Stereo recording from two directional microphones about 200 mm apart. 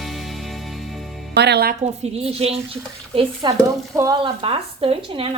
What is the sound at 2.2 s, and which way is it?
Speech, 30° right (ahead or behind).